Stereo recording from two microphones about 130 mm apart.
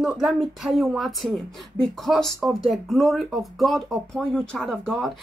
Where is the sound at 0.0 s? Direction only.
5° right (ahead or behind).